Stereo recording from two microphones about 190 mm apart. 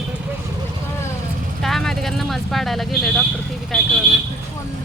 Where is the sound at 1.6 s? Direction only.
Centre (ahead or behind).